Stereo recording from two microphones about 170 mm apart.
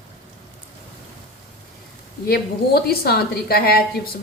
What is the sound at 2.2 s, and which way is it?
Speech, 65° left (ahead or behind).